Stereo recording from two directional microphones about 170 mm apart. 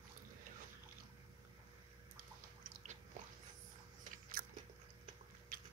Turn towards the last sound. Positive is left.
turn(degrees=-60)  # may be behind; listen again after turning